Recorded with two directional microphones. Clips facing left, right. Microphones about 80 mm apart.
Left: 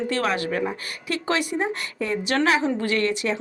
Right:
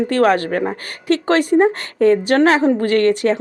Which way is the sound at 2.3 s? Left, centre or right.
Right.